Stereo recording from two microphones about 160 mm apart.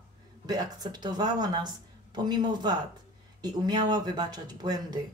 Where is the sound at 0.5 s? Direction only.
25° right (ahead or behind).